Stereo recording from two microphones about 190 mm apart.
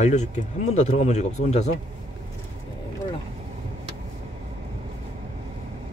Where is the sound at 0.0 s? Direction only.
40° left (ahead or behind).